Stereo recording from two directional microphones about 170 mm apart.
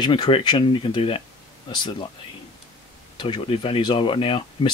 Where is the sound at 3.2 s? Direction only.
30° left (ahead or behind).